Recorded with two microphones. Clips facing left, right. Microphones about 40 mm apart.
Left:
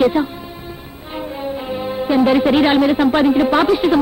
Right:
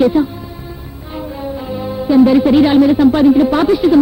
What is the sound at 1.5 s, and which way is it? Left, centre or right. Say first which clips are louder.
Speech: right 1 dB; left.